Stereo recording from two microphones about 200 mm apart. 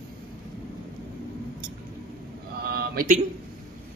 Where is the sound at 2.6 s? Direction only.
50° right (ahead or behind).